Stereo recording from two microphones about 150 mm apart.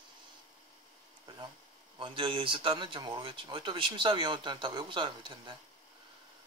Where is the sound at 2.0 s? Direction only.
35° right (ahead or behind).